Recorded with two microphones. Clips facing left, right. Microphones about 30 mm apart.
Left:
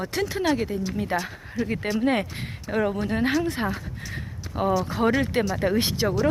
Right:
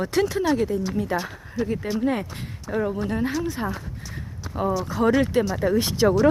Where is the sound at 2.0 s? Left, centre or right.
Left.